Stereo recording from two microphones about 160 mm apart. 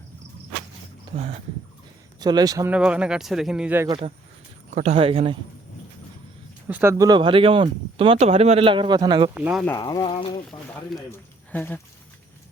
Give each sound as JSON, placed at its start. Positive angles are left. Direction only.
{"t": 1.1, "sound": "speech", "side_deg": -45}
{"t": 2.2, "sound": "speech", "side_deg": -25}
{"t": 2.6, "sound": "speech", "side_deg": -5}
{"t": 4.7, "sound": "speech", "side_deg": -45}
{"t": 6.7, "sound": "speech", "side_deg": -15}
{"t": 9.3, "sound": "speech", "side_deg": -5}
{"t": 9.7, "sound": "speech", "side_deg": 25}
{"t": 11.5, "sound": "speech", "side_deg": 10}